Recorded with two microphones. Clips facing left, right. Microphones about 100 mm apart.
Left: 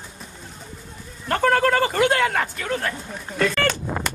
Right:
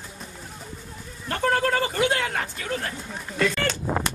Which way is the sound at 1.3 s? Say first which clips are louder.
Left 4 dB; 75° left (ahead or behind).